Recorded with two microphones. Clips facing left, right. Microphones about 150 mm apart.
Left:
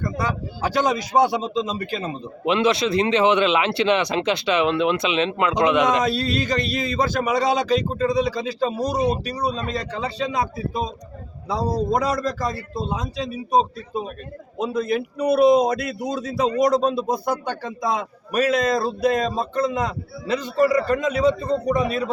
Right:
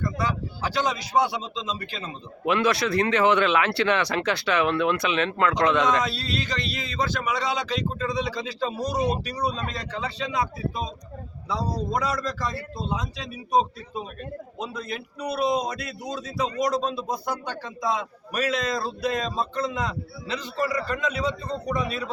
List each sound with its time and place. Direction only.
0.0 s a man's voice: 45° left (ahead or behind)
2.4 s speech: 20° left (ahead or behind)
6.1 s speech: 45° left (ahead or behind)
14.6 s a man's voice: 50° left (ahead or behind)